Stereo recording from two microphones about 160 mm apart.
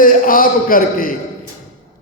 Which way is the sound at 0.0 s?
60° left (ahead or behind).